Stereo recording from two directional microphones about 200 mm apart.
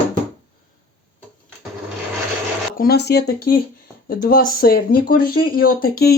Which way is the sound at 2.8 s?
55° left (ahead or behind).